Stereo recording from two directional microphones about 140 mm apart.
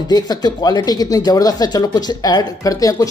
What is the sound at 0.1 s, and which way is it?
Speech, 30° left (ahead or behind).